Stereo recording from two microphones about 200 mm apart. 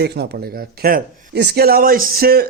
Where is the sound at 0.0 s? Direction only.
55° right (ahead or behind).